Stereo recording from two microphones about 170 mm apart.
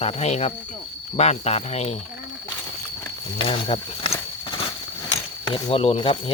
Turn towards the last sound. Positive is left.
turn(degrees=35)  # may be behind; listen again after turning